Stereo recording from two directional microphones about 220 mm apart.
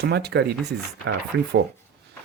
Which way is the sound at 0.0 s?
50° right (ahead or behind).